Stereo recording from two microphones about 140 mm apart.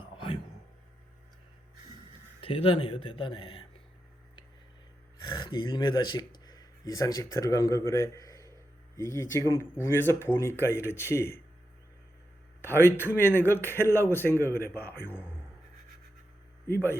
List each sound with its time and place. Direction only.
0.0 s a sound: 35° left (ahead or behind)
2.4 s speech: 40° left (ahead or behind)
5.2 s speech: 30° left (ahead or behind)
12.6 s a man's voice: 15° left (ahead or behind)